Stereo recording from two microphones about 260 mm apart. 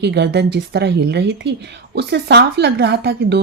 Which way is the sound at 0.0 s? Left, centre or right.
Right.